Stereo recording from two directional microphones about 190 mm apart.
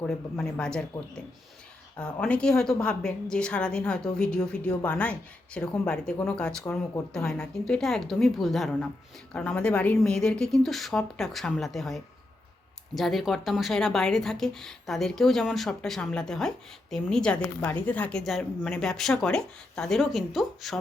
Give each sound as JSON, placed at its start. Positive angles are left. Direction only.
{"t": 0.0, "sound": "a woman's voice", "side_deg": 5}
{"t": 2.0, "sound": "a woman's voice", "side_deg": 5}